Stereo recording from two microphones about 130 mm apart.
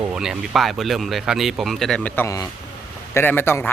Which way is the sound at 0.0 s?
5° right (ahead or behind).